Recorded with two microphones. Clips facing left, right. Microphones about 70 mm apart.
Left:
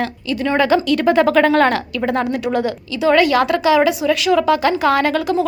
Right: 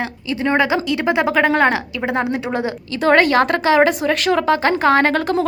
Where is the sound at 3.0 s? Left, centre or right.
Right.